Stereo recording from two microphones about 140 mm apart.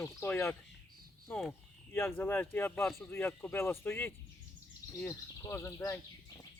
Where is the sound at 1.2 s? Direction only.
5° left (ahead or behind).